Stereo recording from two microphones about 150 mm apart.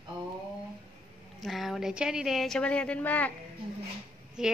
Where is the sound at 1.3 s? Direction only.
Centre (ahead or behind).